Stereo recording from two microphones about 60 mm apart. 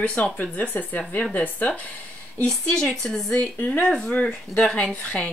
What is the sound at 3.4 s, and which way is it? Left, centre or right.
Speech, left.